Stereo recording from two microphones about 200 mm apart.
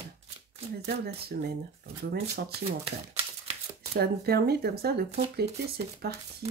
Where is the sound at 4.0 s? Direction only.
55° right (ahead or behind).